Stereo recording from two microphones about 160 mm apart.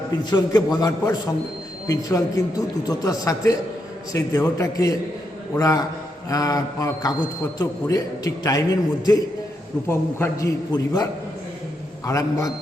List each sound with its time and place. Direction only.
0.1 s a man's voice: 25° left (ahead or behind)